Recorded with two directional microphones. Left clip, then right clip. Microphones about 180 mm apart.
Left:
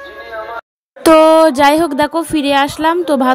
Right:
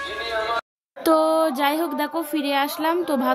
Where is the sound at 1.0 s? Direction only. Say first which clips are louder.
Left 11 dB; 40° left (ahead or behind).